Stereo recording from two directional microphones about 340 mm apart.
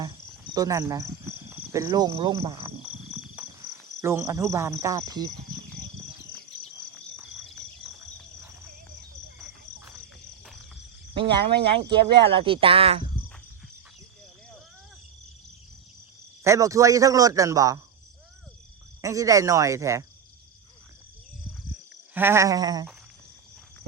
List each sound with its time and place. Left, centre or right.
0.0 s cricket: centre
4.0 s speech: centre
9.4 s cricket: centre
11.1 s speech: centre
16.4 s speech: centre
19.0 s speech: centre
22.1 s speech: centre